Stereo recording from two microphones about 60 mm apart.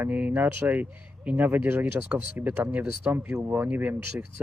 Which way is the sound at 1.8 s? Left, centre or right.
Right.